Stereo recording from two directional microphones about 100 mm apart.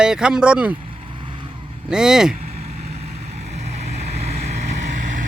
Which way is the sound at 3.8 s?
90° right.